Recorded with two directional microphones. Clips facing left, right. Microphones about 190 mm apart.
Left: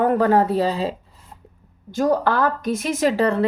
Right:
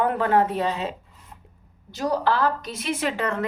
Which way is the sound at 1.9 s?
50° left (ahead or behind).